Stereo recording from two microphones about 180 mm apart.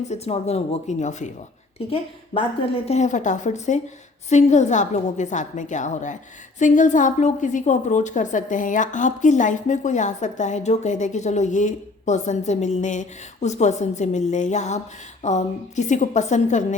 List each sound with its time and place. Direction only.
0.1 s a woman's voice: 35° left (ahead or behind)
2.3 s a woman's voice: 30° left (ahead or behind)